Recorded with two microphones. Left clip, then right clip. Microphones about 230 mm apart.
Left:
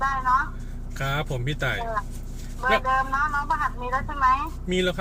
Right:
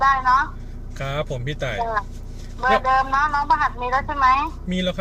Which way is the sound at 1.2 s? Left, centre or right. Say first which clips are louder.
Right 2 dB; centre.